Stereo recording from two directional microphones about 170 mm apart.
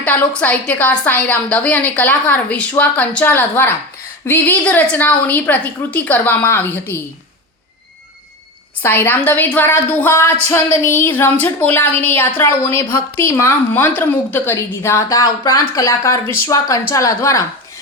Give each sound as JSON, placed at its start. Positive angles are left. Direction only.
{"t": 0.0, "sound": "a woman's voice", "side_deg": 5}
{"t": 8.8, "sound": "a woman's voice", "side_deg": 10}